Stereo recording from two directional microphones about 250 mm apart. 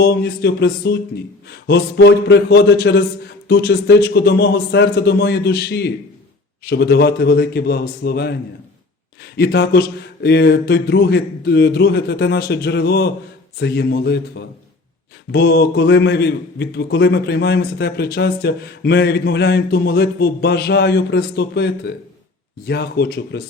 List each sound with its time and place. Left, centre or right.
0.0 s a man's voice: left